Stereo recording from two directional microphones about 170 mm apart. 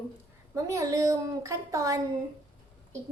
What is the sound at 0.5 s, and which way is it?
A woman's voice, 20° right (ahead or behind).